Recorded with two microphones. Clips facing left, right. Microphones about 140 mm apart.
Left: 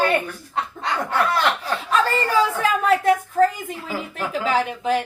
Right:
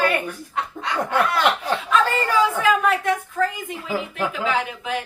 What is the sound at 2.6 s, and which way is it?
A woman's voice, 35° left (ahead or behind).